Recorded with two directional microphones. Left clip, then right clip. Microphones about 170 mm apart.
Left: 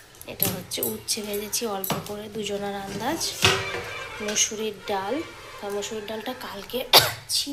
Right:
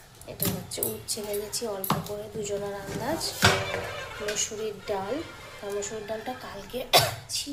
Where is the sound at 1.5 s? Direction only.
10° left (ahead or behind).